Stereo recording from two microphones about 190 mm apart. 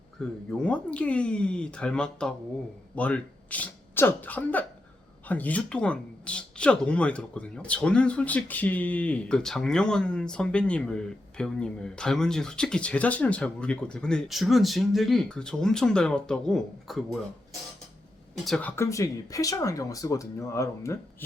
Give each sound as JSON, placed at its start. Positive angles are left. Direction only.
{"t": 0.2, "sound": "speech", "side_deg": 0}
{"t": 18.4, "sound": "speech", "side_deg": 5}
{"t": 18.8, "sound": "speech", "side_deg": 15}